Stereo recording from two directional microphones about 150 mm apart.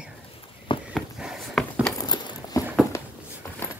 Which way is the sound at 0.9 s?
Centre (ahead or behind).